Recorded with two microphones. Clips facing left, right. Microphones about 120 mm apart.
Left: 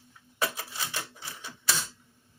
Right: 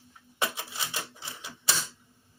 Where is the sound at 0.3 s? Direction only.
25° right (ahead or behind).